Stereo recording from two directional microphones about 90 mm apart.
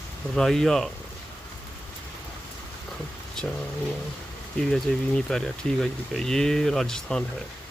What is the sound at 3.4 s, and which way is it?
Speech, 5° left (ahead or behind).